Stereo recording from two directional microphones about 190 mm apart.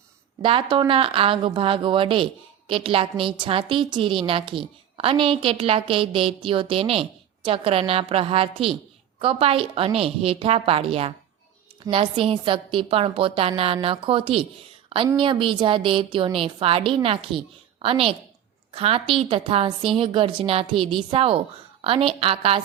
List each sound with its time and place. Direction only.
0.4 s speech: 25° right (ahead or behind)